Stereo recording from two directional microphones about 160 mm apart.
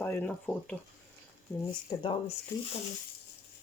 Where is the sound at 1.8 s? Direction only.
30° left (ahead or behind).